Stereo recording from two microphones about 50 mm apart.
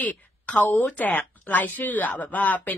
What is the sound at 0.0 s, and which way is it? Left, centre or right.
A woman's voice, left.